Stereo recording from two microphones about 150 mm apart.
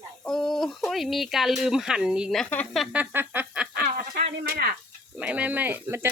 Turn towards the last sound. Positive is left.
turn(degrees=-15)  # may be behind; listen again after turning